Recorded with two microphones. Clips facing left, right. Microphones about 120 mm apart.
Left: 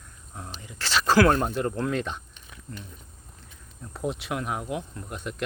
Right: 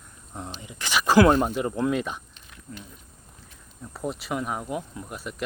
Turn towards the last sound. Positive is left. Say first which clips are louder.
# even
turn(degrees=-5)  # may be behind; listen again after turning